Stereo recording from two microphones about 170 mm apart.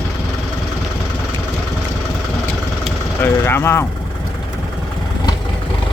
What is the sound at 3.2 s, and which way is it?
Speech, 15° left (ahead or behind).